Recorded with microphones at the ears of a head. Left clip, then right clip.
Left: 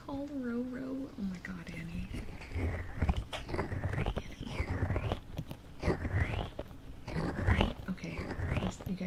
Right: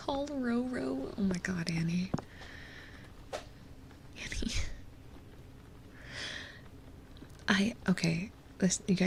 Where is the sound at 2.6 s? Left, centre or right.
Left.